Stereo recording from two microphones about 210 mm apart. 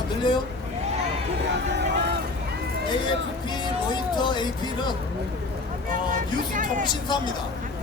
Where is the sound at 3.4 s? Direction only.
20° left (ahead or behind).